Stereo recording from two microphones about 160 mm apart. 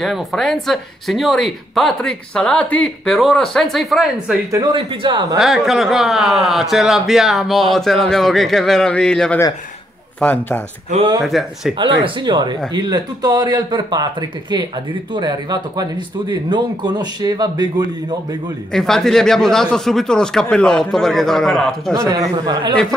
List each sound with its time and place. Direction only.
0.0 s speech: centre (ahead or behind)
4.5 s speech: 30° right (ahead or behind)
5.4 s a man's voice: centre (ahead or behind)
11.8 s speech: 30° right (ahead or behind)
15.1 s speech: 25° right (ahead or behind)
18.7 s speech: 5° left (ahead or behind)
22.5 s speech: 30° right (ahead or behind)